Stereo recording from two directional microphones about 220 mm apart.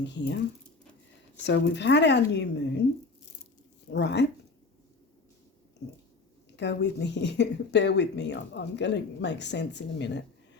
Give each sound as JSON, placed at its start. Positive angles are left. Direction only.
{"t": 0.0, "sound": "speech", "side_deg": 55}
{"t": 1.5, "sound": "speech", "side_deg": 55}
{"t": 3.9, "sound": "speech", "side_deg": 55}
{"t": 6.6, "sound": "speech", "side_deg": 50}